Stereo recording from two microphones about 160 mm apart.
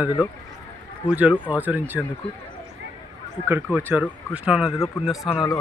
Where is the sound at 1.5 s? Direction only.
10° right (ahead or behind).